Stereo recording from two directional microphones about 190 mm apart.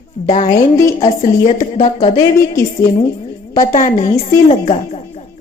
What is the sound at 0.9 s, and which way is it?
A woman's voice, 30° left (ahead or behind).